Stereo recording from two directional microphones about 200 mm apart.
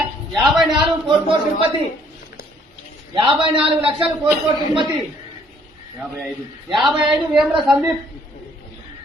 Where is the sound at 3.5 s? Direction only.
25° right (ahead or behind).